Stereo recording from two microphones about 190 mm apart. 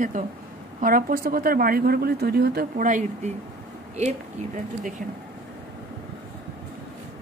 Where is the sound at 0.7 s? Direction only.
45° right (ahead or behind).